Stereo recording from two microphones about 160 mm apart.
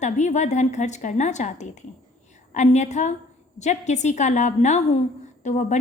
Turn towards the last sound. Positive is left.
turn(degrees=50)  # may be behind; listen again after turning